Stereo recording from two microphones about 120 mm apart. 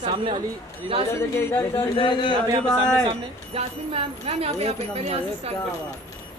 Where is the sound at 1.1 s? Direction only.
20° left (ahead or behind).